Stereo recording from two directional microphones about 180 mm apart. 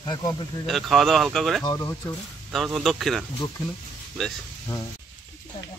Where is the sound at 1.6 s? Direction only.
20° left (ahead or behind).